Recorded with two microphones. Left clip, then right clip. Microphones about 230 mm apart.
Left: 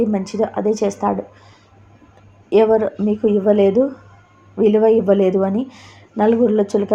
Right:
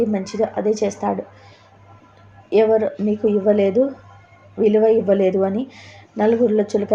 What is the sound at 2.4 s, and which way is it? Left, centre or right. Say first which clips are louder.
Speech: left 2 dB; left.